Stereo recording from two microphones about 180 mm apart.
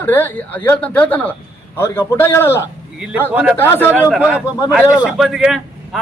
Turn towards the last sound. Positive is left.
turn(degrees=0)  # may be behind; listen again after turning